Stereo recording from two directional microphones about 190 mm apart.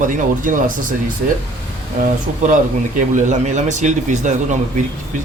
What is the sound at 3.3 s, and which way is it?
Speech, 40° right (ahead or behind).